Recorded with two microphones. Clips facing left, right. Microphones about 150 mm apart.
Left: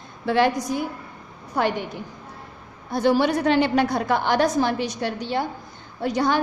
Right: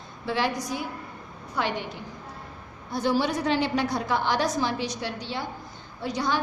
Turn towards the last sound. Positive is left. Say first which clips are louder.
# left 6 dB
turn(degrees=55)  # may be behind; listen again after turning